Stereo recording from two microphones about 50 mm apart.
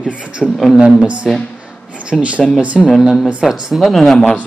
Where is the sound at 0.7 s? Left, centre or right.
Right.